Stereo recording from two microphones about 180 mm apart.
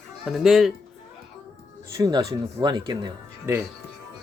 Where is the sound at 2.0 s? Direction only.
20° right (ahead or behind).